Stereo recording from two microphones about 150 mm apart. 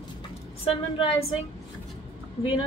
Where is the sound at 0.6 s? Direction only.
40° left (ahead or behind).